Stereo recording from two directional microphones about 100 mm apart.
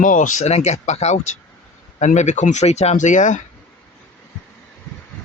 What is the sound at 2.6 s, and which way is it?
Speech, 90° left.